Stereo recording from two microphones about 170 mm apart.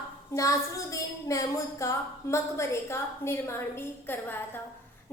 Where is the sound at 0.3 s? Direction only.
20° left (ahead or behind).